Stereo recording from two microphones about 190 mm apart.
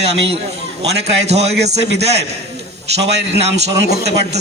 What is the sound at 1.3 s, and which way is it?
Speech, 35° right (ahead or behind).